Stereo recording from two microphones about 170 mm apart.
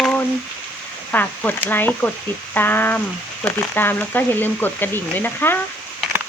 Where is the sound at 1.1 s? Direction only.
10° left (ahead or behind).